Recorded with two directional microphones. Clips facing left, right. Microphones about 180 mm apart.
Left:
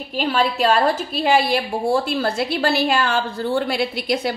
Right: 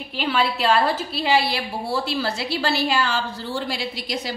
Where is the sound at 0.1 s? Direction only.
45° left (ahead or behind).